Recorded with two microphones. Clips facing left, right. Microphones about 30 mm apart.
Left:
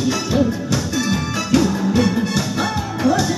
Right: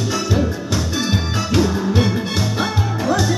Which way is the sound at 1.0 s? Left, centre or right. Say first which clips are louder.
Even; right.